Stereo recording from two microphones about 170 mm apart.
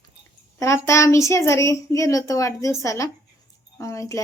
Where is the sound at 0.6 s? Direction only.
15° left (ahead or behind).